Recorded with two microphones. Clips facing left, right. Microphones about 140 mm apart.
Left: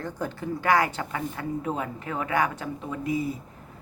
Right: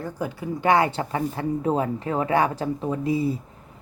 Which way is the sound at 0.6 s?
25° right (ahead or behind).